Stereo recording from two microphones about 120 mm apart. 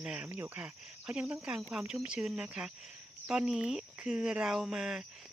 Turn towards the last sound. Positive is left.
turn(degrees=-5)  # may be behind; listen again after turning